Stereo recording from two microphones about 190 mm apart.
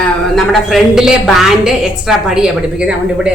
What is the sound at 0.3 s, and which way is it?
A man's voice, centre (ahead or behind).